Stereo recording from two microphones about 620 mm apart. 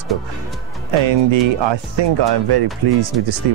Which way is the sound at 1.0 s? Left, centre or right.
Right.